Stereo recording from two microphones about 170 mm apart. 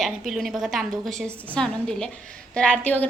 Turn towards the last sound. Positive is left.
turn(degrees=10)  # may be behind; listen again after turning